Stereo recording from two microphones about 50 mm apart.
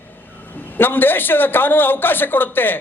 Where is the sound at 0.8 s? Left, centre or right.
Left.